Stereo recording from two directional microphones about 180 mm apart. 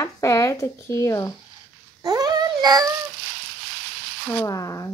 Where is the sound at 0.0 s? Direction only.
15° left (ahead or behind).